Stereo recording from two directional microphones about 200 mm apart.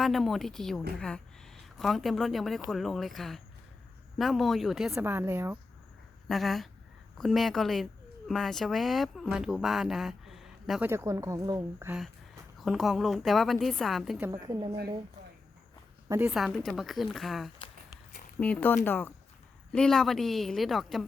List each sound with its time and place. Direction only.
0.0 s speech: centre (ahead or behind)
6.2 s speech: centre (ahead or behind); by 11.9 s 15° right (ahead or behind)
11.9 s speech: centre (ahead or behind)
14.2 s a woman's voice: 15° right (ahead or behind)
16.0 s a woman's voice: 15° right (ahead or behind)
16.3 s speech: centre (ahead or behind)